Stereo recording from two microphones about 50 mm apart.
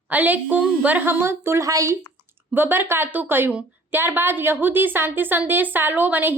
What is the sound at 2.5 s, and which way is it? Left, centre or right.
A woman's voice, right.